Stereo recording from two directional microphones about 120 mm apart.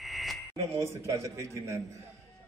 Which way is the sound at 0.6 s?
25° right (ahead or behind).